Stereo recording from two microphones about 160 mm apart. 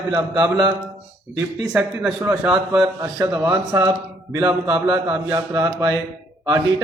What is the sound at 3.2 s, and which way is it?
Speech, 25° right (ahead or behind).